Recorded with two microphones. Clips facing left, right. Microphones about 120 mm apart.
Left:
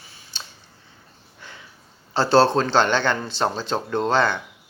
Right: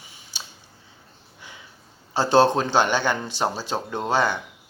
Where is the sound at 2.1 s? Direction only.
15° right (ahead or behind).